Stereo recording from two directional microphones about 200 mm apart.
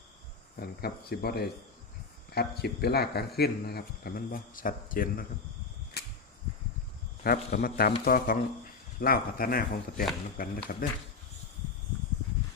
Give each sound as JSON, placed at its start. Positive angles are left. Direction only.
{"t": 0.6, "sound": "a man's voice", "side_deg": 50}
{"t": 6.0, "sound": "a sound", "side_deg": 55}
{"t": 7.3, "sound": "a man's voice", "side_deg": 50}